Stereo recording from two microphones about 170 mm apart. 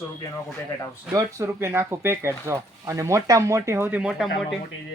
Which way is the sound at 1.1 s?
15° right (ahead or behind).